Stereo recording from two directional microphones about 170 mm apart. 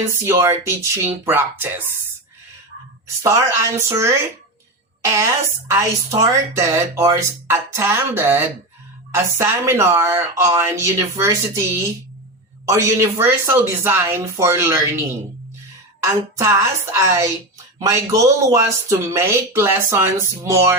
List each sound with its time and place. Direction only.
0.1 s a woman's voice: 15° right (ahead or behind)
3.2 s a woman's voice: 20° right (ahead or behind)
16.0 s a woman's voice: 15° right (ahead or behind)